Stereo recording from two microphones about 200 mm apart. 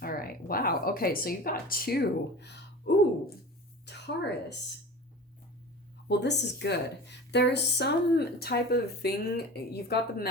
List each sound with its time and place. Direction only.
0.0 s a sound: 45° left (ahead or behind)
3.8 s a woman's voice: 60° left (ahead or behind)
6.1 s a woman's voice: 60° left (ahead or behind)